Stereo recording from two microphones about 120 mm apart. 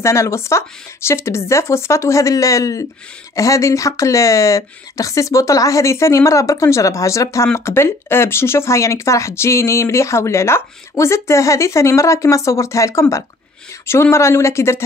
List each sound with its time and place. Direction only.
0.0 s speech: 25° left (ahead or behind)
14.1 s speech: 25° left (ahead or behind)